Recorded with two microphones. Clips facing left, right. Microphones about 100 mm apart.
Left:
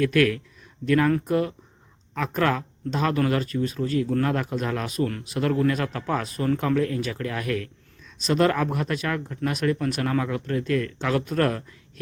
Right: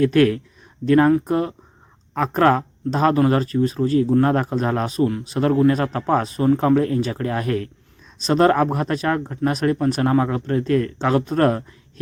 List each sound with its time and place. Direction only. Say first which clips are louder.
0.0 s speech: right 5 dB; 30° right (ahead or behind)